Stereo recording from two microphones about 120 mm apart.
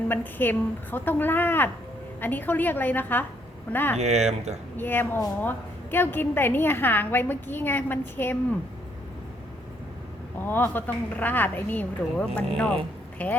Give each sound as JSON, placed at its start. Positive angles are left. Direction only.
{"t": 0.1, "sound": "a woman's voice", "side_deg": 15}
{"t": 3.9, "sound": "speech", "side_deg": -65}
{"t": 4.8, "sound": "a woman's voice", "side_deg": 15}
{"t": 10.4, "sound": "a woman's voice", "side_deg": 15}